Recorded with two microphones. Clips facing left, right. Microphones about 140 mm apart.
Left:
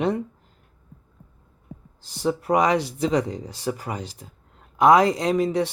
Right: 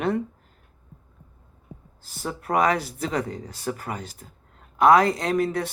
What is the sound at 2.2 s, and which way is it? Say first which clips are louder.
Speech: left 2 dB; 15° left (ahead or behind).